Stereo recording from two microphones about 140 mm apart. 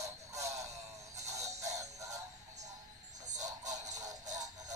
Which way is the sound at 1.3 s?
50° right (ahead or behind).